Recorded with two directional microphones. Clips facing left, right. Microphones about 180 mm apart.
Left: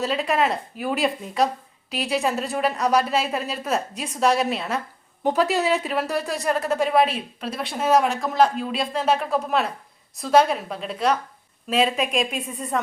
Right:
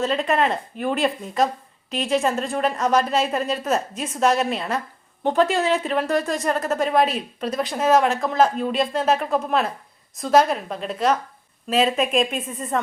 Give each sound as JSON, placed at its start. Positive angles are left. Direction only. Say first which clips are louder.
{"t": 0.0, "sound": "speech", "louder": "right 1 dB", "side_deg": 0}